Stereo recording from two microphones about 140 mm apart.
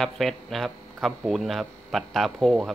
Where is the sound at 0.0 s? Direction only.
Centre (ahead or behind).